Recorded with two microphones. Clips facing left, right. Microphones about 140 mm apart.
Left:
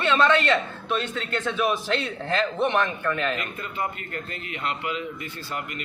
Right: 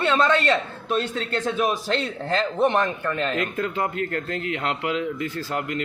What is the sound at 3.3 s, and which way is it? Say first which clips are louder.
Speech: right 6 dB; 90° right.